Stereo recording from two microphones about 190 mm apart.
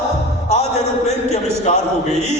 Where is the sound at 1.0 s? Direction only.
35° left (ahead or behind).